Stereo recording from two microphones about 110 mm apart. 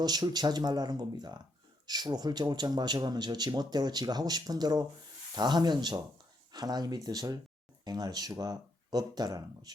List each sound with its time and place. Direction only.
0.0 s speech: 40° right (ahead or behind)